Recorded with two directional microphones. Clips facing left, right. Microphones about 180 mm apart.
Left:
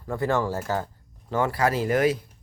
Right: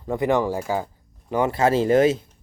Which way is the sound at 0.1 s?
15° right (ahead or behind).